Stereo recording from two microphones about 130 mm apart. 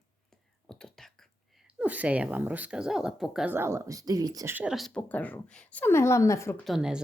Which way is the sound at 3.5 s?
20° right (ahead or behind).